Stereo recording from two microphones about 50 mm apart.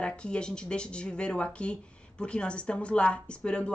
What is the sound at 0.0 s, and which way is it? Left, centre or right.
Speech, centre.